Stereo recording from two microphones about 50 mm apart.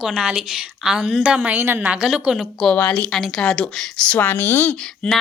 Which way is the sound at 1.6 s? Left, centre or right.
Right.